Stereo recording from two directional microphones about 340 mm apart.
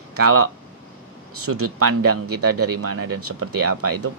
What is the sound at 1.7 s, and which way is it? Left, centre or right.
Speech, right.